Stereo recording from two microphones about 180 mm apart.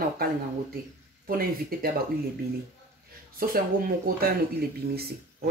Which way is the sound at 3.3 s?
55° right (ahead or behind).